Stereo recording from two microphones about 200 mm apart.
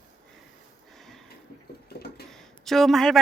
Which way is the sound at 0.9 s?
Centre (ahead or behind).